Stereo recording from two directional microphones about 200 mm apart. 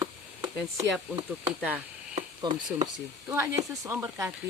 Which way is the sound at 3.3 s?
15° right (ahead or behind).